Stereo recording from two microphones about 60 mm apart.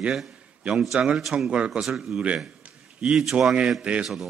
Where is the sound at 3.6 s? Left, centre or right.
Centre.